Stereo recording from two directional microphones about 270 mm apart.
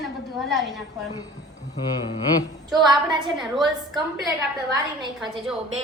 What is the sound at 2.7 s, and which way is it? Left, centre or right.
Speech, centre.